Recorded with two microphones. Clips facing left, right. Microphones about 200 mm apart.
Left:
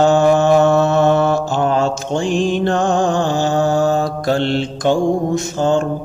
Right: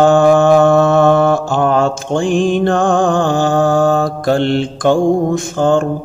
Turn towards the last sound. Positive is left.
turn(degrees=-50)  # may be behind; listen again after turning